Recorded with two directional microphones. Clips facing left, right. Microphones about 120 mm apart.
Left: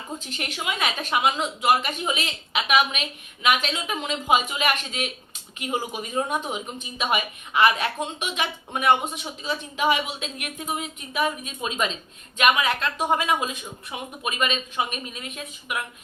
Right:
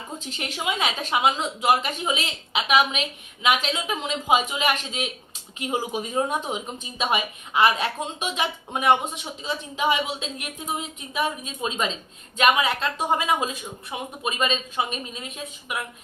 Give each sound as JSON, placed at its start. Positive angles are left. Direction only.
{"t": 0.3, "sound": "a woman's voice", "side_deg": -25}